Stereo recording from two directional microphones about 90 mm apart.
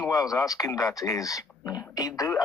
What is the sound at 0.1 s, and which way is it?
Speech, 40° left (ahead or behind).